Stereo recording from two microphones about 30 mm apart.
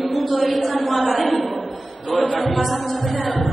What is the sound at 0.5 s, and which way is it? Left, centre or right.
Speech, centre.